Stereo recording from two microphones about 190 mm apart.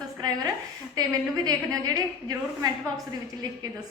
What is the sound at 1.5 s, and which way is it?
A woman's voice, 20° right (ahead or behind).